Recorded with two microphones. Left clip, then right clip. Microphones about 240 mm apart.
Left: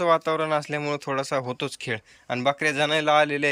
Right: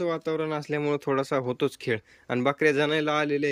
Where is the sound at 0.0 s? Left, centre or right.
Centre.